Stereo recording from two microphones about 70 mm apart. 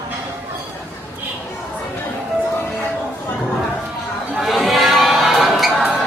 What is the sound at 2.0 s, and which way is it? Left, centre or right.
Music, left.